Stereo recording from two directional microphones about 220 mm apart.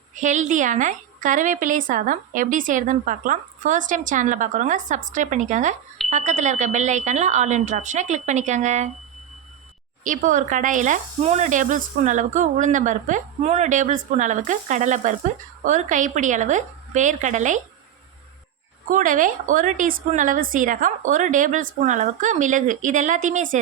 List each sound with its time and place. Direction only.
0.2 s a woman's voice: 35° right (ahead or behind)
10.0 s a woman's voice: 35° right (ahead or behind)
18.9 s a woman's voice: 35° right (ahead or behind)